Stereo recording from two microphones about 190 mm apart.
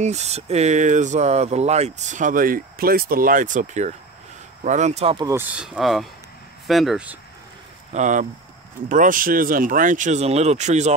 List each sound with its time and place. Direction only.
0.0 s speech: 35° right (ahead or behind)
5.2 s speech: 10° right (ahead or behind)
7.9 s speech: 40° right (ahead or behind)